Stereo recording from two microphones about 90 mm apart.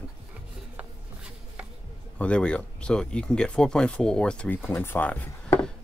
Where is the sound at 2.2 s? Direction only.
15° left (ahead or behind).